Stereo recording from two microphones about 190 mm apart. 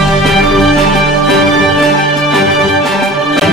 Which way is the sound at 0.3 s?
Centre (ahead or behind).